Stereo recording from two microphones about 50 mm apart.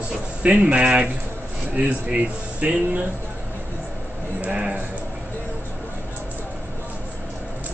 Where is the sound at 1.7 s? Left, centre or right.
Right.